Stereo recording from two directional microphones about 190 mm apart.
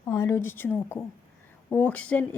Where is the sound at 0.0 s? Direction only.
15° left (ahead or behind).